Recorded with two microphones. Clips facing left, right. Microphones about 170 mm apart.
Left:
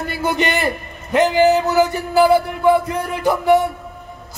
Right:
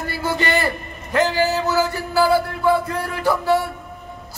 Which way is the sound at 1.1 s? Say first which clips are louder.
Left 5 dB; 20° left (ahead or behind).